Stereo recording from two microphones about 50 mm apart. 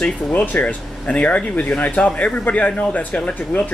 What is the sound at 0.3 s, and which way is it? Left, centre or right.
Speech, left.